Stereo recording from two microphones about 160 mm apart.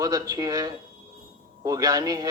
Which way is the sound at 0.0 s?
25° right (ahead or behind).